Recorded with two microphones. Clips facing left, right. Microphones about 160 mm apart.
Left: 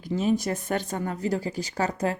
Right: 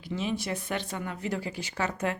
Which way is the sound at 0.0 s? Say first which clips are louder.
Left 7 dB; 45° left (ahead or behind).